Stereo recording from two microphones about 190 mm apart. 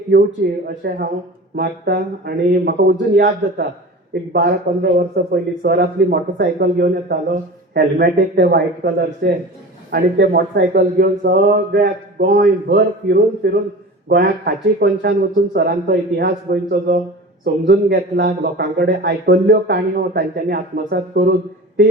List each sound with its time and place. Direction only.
0.4 s a man's voice: 55° right (ahead or behind)